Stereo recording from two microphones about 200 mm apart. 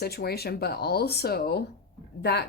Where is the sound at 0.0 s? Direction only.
50° left (ahead or behind).